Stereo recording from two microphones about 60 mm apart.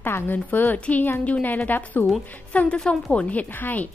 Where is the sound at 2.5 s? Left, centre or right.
Centre; by 3.8 s left.